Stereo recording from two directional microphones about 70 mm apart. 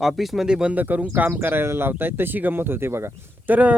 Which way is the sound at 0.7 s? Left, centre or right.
Right.